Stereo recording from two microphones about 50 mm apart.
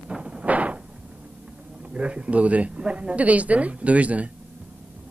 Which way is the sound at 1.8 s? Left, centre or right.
Right.